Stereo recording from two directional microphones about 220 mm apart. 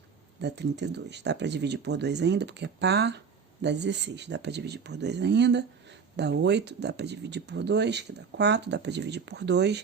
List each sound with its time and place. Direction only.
0.4 s speech: 50° right (ahead or behind)